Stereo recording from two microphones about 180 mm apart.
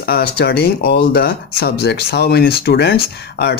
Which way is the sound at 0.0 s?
60° left (ahead or behind).